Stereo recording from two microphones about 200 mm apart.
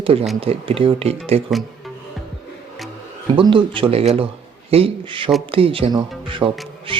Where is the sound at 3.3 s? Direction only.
25° right (ahead or behind).